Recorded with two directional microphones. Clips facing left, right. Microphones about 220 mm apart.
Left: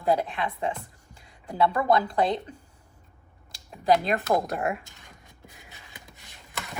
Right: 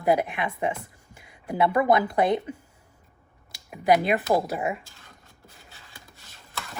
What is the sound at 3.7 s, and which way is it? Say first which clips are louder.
Speech: right 2 dB; 15° right (ahead or behind).